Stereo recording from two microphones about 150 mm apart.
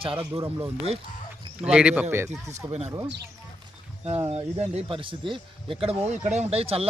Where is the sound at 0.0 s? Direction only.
35° right (ahead or behind).